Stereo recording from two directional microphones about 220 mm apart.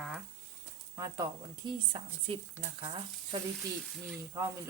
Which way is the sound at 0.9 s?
15° right (ahead or behind).